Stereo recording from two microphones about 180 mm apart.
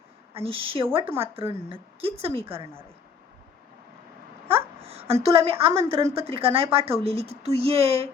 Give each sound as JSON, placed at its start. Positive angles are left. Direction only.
{"t": 0.3, "sound": "speech", "side_deg": -30}
{"t": 4.4, "sound": "a woman's voice", "side_deg": -30}